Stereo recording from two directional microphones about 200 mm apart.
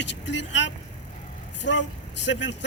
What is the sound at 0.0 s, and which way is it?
Speech, 65° left (ahead or behind).